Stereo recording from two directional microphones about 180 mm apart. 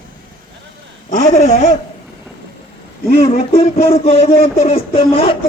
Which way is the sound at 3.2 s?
35° left (ahead or behind).